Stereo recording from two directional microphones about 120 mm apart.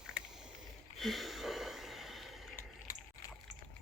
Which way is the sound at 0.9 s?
Centre (ahead or behind).